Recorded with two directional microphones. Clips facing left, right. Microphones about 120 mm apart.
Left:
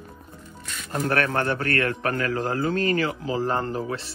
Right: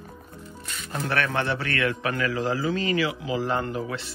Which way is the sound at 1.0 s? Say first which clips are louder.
Left 2 dB; 40° left (ahead or behind).